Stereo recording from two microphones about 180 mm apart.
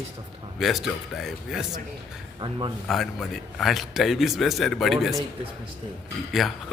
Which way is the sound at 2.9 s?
Centre (ahead or behind).